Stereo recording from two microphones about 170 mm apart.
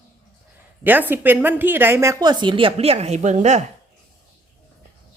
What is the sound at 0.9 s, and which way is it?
A woman's voice, 10° right (ahead or behind).